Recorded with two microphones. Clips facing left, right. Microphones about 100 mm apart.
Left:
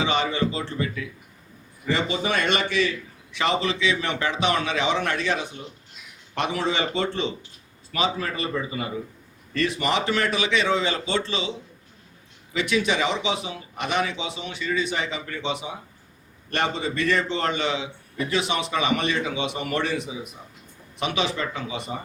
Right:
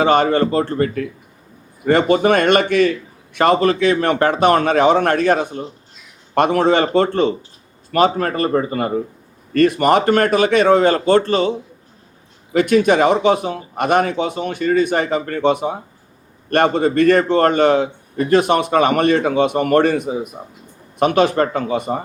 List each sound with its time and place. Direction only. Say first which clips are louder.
0.0 s a man's voice: right 10 dB; 50° right (ahead or behind)